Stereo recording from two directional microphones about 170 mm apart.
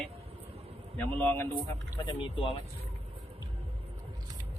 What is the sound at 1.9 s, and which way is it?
Speech, 25° left (ahead or behind).